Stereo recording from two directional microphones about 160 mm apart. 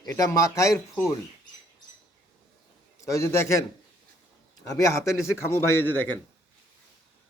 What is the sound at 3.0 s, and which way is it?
Speech, 20° left (ahead or behind).